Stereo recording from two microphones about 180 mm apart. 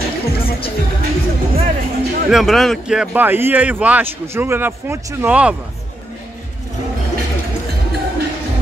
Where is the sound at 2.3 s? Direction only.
Centre (ahead or behind).